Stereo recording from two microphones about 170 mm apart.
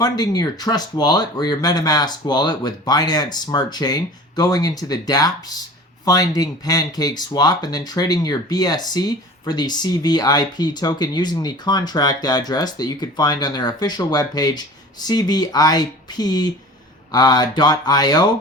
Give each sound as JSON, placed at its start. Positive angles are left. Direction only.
{"t": 0.0, "sound": "speech", "side_deg": 25}